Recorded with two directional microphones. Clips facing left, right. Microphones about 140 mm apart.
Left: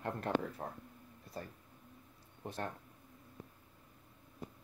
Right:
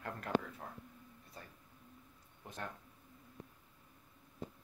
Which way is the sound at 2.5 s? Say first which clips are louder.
Left 5 dB; 35° left (ahead or behind).